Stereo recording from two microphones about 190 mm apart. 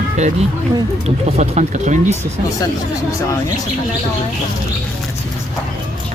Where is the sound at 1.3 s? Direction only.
35° right (ahead or behind).